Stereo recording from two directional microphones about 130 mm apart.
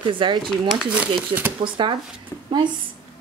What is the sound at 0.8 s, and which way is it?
Speech, 10° right (ahead or behind).